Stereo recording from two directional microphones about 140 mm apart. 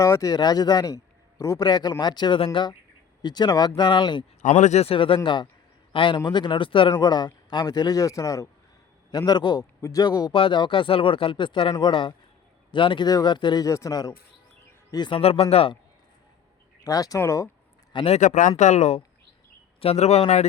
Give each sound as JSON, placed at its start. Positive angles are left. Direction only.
{"t": 0.0, "sound": "a man's voice", "side_deg": 25}
{"t": 4.4, "sound": "a man's voice", "side_deg": 60}
{"t": 15.2, "sound": "speech", "side_deg": 45}
{"t": 16.8, "sound": "a man's voice", "side_deg": 25}
{"t": 17.9, "sound": "speech", "side_deg": 45}
{"t": 18.2, "sound": "speech", "side_deg": 65}